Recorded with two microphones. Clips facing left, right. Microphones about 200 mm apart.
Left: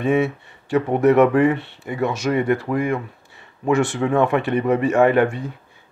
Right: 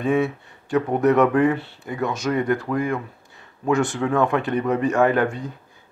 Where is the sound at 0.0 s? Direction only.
5° left (ahead or behind).